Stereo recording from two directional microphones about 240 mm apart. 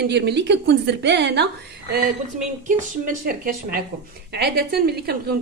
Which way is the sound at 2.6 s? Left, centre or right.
Right.